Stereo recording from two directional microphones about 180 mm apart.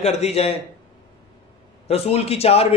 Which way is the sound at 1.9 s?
35° left (ahead or behind).